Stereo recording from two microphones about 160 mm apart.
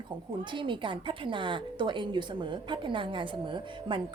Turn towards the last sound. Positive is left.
turn(degrees=-30)  # may be behind; listen again after turning